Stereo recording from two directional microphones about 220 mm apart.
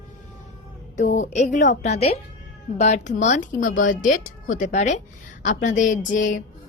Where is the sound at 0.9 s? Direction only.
35° left (ahead or behind).